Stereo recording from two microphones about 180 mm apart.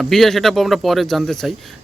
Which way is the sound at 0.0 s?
Centre (ahead or behind).